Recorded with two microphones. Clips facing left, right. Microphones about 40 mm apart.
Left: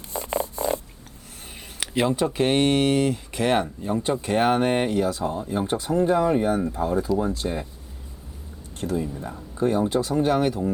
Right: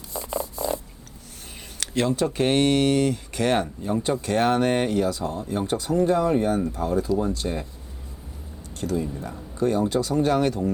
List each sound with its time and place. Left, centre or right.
0.1 s purr: left
1.8 s speech: centre
5.3 s speech: centre
5.8 s speech: left
7.1 s speech: centre
8.8 s speech: centre